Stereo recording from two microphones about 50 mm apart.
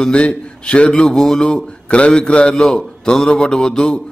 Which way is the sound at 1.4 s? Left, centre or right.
Left.